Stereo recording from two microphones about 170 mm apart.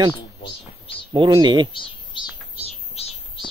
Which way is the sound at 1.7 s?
30° left (ahead or behind).